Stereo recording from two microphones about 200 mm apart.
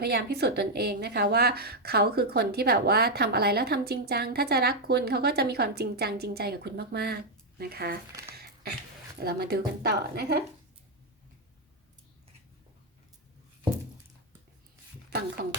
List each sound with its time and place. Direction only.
0.0 s a woman's voice: 50° right (ahead or behind)
9.1 s a woman's voice: 50° right (ahead or behind)